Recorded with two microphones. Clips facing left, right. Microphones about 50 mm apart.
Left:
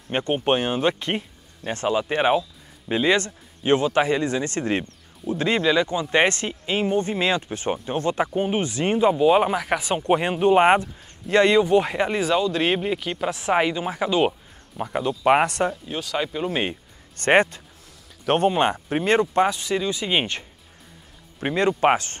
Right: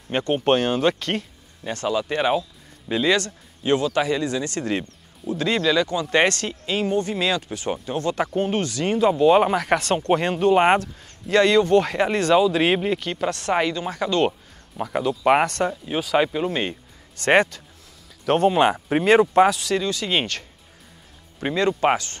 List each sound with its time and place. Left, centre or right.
0.1 s speech: centre
8.3 s speech: centre
9.1 s speech: centre
15.8 s speech: centre
17.2 s speech: centre
18.5 s speech: centre
19.5 s speech: centre
21.9 s speech: left